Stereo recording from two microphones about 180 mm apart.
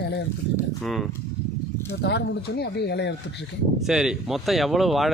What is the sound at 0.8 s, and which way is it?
Speech, centre (ahead or behind).